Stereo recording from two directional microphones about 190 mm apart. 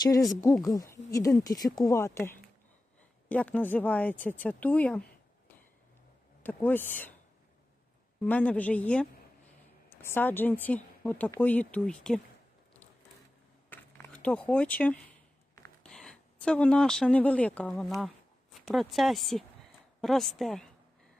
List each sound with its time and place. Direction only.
0.6 s speech: 20° left (ahead or behind)
6.4 s speech: 10° left (ahead or behind)
8.3 s speech: 10° left (ahead or behind)
13.7 s a sound: 10° left (ahead or behind)
15.9 s speech: 5° left (ahead or behind)